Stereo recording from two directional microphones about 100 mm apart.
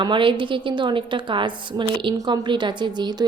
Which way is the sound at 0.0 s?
55° right (ahead or behind).